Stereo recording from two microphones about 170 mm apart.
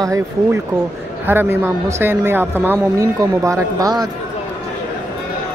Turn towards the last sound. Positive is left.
turn(degrees=-20)  # may be behind; listen again after turning